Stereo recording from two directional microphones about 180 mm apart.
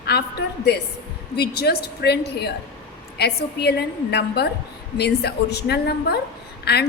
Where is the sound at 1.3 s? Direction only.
60° left (ahead or behind).